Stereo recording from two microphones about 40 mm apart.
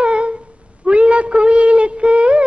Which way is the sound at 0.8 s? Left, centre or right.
Right.